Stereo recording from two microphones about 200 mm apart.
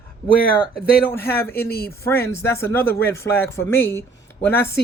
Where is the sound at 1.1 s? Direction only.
10° left (ahead or behind).